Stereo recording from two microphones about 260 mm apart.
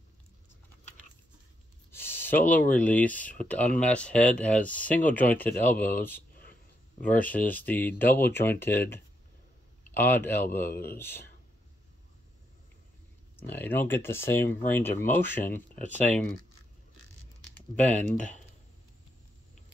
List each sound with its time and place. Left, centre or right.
1.9 s a sound: centre
2.7 s speech: centre
5.8 s speech: left
7.2 s speech: centre
9.9 s speech: centre
10.7 s speech: left
11.0 s speech: centre
13.4 s speech: centre
17.6 s speech: centre